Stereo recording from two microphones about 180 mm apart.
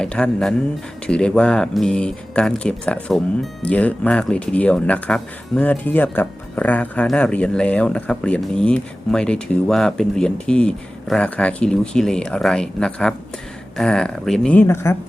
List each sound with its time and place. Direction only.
0.0 s speech: 5° left (ahead or behind)